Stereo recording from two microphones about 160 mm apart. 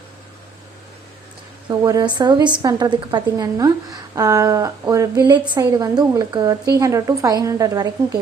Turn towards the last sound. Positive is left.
turn(degrees=-20)  # may be behind; listen again after turning